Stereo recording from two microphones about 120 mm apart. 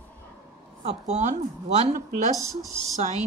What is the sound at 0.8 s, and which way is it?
A woman's voice, 75° right (ahead or behind).